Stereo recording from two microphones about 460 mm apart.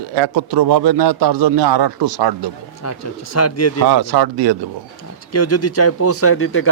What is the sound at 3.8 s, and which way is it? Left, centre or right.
Speech, right.